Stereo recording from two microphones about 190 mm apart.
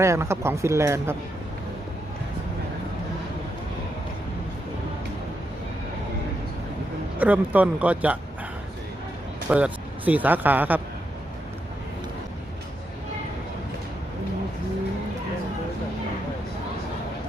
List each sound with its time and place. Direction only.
0.0 s speech: 15° right (ahead or behind)
7.2 s speech: 10° right (ahead or behind)
9.5 s speech: 5° right (ahead or behind)